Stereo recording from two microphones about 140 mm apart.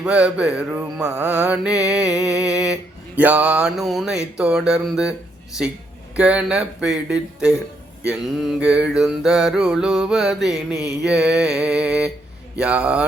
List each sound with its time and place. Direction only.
0.0 s mantra: 10° right (ahead or behind)
6.1 s mantra: 10° right (ahead or behind)